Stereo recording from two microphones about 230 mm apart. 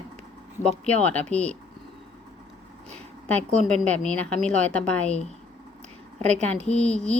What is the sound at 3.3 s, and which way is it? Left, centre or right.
Speech, centre.